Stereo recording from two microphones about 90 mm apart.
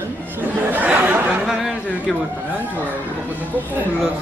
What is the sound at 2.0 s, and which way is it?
Speech, 20° right (ahead or behind).